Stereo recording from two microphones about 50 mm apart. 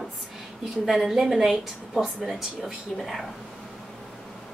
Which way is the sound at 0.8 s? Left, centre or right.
Centre.